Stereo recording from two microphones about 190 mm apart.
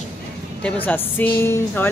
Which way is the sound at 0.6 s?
10° left (ahead or behind).